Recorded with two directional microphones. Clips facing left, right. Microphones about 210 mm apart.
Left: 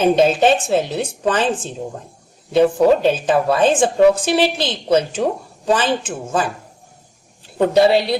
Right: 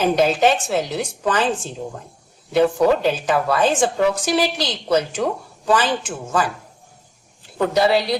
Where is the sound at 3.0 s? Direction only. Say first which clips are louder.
Left 4 dB; 25° left (ahead or behind).